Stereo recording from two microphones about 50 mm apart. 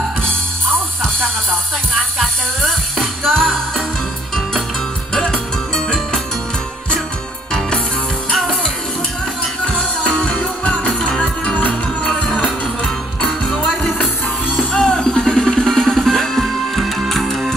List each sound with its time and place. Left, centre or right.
2.1 s music: centre
5.1 s music: centre
8.3 s music: centre
9.7 s music: centre